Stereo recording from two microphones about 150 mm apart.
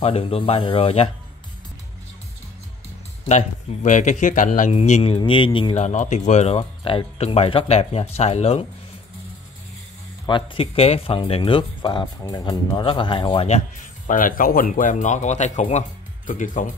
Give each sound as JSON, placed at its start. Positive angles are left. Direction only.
{"t": 0.0, "sound": "speech", "side_deg": 40}
{"t": 3.3, "sound": "speech", "side_deg": 55}
{"t": 5.8, "sound": "speech", "side_deg": 50}
{"t": 10.2, "sound": "speech", "side_deg": 35}
{"t": 13.5, "sound": "speech", "side_deg": 60}